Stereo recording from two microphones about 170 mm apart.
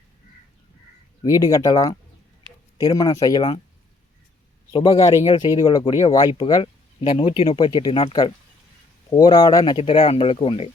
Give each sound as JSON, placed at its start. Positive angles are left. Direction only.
{"t": 1.2, "sound": "speech", "side_deg": 20}
{"t": 4.7, "sound": "speech", "side_deg": 30}